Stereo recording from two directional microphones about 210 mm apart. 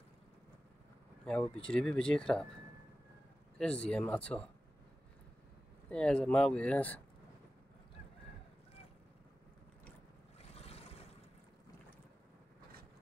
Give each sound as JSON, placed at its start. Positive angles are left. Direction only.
{"t": 1.2, "sound": "speech", "side_deg": 5}
{"t": 5.9, "sound": "speech", "side_deg": 5}
{"t": 10.5, "sound": "boat", "side_deg": 30}